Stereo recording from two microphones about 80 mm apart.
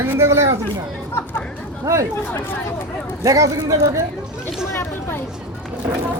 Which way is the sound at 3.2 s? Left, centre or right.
Right.